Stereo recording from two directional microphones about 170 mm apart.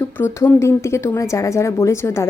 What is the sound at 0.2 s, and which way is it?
A woman's voice, 15° left (ahead or behind).